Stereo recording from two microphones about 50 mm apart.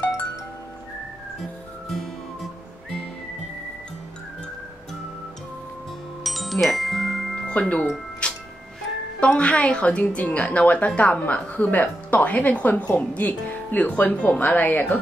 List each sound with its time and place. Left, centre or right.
6.2 s music: centre
7.4 s speech: left
8.2 s music: left
9.2 s speech: left